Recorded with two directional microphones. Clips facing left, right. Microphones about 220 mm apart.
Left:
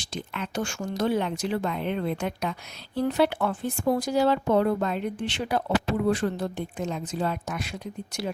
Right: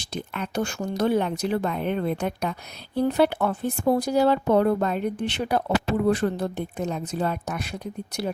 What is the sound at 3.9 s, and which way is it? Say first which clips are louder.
Speech: right 2 dB; 55° right (ahead or behind).